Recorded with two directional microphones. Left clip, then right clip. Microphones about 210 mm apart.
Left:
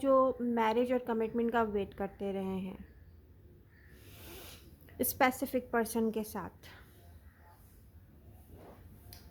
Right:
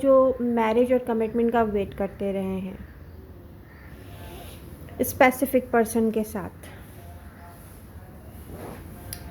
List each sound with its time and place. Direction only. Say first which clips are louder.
0.0 s a woman's voice: right 9 dB; 25° left (ahead or behind)
4.2 s rub: right 8 dB; 35° left (ahead or behind)
4.9 s a woman's voice: right 11 dB; 20° left (ahead or behind)